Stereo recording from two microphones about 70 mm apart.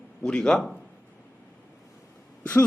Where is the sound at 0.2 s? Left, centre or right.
Centre.